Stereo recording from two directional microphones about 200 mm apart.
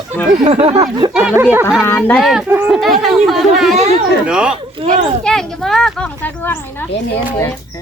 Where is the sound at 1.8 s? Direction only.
10° left (ahead or behind).